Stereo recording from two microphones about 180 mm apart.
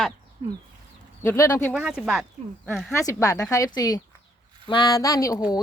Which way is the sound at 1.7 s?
5° right (ahead or behind).